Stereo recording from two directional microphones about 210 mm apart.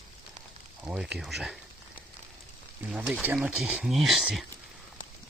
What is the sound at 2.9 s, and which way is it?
Speech, 5° right (ahead or behind).